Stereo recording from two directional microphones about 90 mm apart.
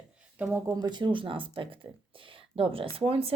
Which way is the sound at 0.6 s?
45° right (ahead or behind).